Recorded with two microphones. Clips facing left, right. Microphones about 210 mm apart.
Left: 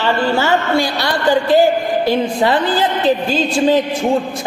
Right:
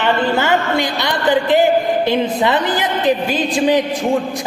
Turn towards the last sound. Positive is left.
turn(degrees=-15)  # may be behind; listen again after turning